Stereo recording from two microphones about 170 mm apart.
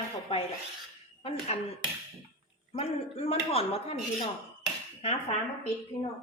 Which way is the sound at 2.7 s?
35° left (ahead or behind).